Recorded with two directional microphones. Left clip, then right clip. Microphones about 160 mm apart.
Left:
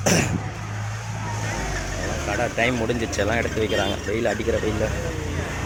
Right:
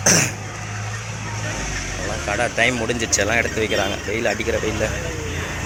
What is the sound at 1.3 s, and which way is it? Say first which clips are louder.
Vehicle: right 1 dB; 45° left (ahead or behind).